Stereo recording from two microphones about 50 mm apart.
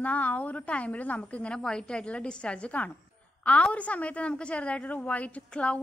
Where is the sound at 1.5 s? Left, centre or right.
Centre.